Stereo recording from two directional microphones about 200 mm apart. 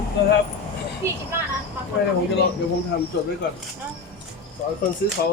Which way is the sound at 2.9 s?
60° left (ahead or behind).